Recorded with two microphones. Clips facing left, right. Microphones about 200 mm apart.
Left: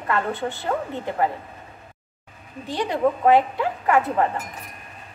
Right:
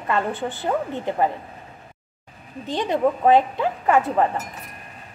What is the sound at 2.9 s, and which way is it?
A woman's voice, 20° right (ahead or behind).